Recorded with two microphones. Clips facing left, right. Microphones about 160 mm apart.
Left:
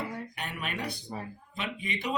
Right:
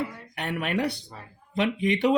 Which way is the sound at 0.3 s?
65° right (ahead or behind).